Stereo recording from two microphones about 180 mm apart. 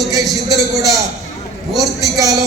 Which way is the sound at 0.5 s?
20° right (ahead or behind).